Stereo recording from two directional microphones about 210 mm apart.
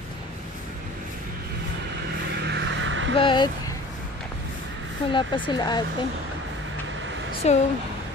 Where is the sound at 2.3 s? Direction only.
55° right (ahead or behind).